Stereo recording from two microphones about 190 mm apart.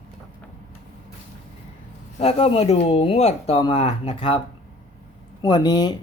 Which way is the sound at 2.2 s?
30° left (ahead or behind).